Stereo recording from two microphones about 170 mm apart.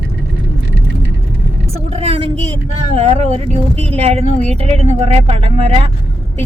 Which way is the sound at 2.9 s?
40° right (ahead or behind).